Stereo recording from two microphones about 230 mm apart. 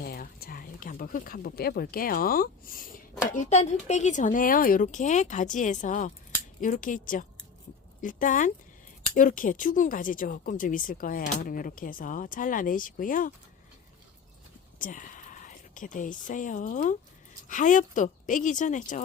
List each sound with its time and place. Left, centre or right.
0.0 s speech: left
14.8 s speech: left